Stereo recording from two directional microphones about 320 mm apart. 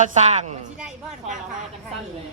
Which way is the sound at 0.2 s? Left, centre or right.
Right.